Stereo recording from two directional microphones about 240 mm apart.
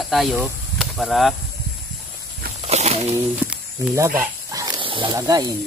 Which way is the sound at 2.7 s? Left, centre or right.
Right.